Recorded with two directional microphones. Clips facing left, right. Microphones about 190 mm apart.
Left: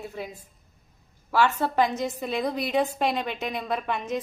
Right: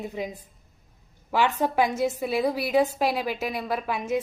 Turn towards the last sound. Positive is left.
turn(degrees=-5)  # may be behind; listen again after turning